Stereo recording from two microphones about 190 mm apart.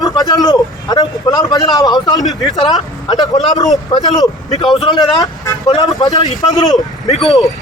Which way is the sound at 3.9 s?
20° left (ahead or behind).